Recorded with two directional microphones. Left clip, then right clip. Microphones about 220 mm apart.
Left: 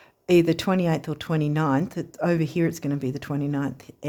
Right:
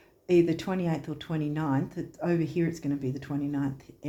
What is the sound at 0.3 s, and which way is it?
Speech, 50° left (ahead or behind).